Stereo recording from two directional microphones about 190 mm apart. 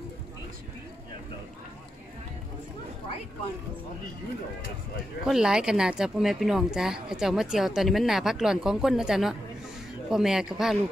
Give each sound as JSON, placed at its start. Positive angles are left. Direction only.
{"t": 5.2, "sound": "speech", "side_deg": -5}